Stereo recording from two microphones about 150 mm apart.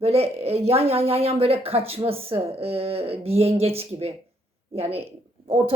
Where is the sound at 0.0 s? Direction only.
45° right (ahead or behind).